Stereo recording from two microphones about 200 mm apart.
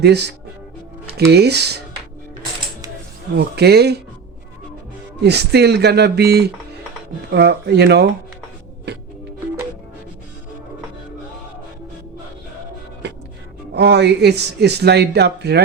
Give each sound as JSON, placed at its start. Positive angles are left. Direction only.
{"t": 0.0, "sound": "speech", "side_deg": -55}
{"t": 3.3, "sound": "speech", "side_deg": -55}
{"t": 5.2, "sound": "speech", "side_deg": -55}
{"t": 13.0, "sound": "music", "side_deg": -60}
{"t": 13.7, "sound": "speech", "side_deg": -55}